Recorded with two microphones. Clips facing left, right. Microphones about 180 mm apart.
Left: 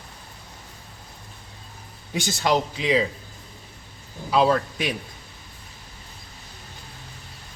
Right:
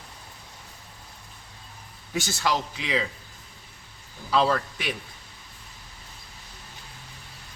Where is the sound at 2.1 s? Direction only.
20° left (ahead or behind).